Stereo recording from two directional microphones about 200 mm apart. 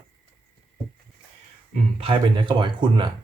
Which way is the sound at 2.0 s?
25° right (ahead or behind).